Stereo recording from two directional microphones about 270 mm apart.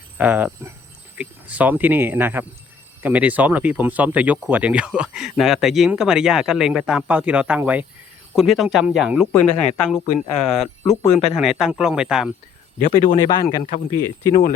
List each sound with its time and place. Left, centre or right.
0.2 s a man's voice: centre
10.6 s speech: left
11.3 s a man's voice: centre
12.8 s a man's voice: centre